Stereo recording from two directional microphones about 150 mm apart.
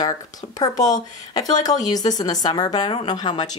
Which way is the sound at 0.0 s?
25° left (ahead or behind).